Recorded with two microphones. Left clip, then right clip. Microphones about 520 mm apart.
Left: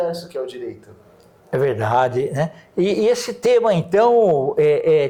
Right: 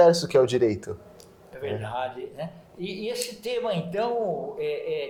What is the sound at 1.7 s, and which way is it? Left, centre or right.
A man's voice, left.